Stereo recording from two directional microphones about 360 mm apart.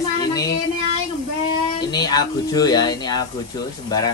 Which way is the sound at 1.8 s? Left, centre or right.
Centre.